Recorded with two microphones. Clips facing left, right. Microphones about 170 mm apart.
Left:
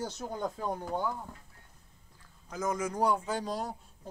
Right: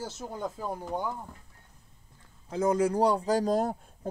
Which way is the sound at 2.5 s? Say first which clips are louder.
Right 8 dB; 30° right (ahead or behind).